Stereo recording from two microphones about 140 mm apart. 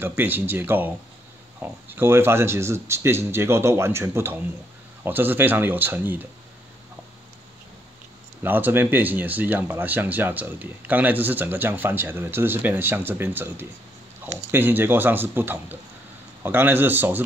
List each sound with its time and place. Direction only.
0.0 s speech: 15° right (ahead or behind)
8.4 s speech: 15° right (ahead or behind)